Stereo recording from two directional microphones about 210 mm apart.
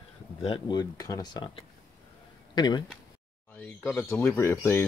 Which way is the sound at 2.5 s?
20° left (ahead or behind).